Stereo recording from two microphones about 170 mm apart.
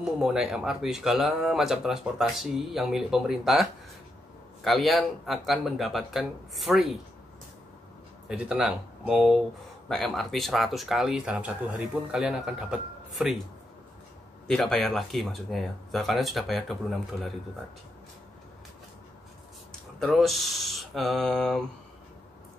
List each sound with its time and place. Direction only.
0.0 s speech: 5° right (ahead or behind)
4.6 s speech: centre (ahead or behind)
8.3 s speech: 5° right (ahead or behind)
14.5 s speech: centre (ahead or behind)
20.0 s speech: centre (ahead or behind)